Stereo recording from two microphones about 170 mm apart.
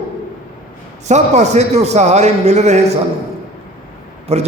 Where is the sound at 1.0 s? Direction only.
40° right (ahead or behind).